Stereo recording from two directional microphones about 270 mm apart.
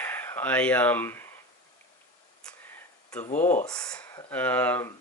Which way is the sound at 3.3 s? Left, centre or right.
Centre.